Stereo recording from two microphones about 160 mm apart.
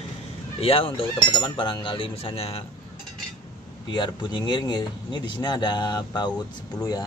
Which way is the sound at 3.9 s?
25° left (ahead or behind).